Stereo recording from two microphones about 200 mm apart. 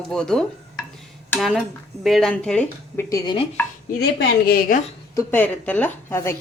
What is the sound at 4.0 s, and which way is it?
Speech, 50° left (ahead or behind).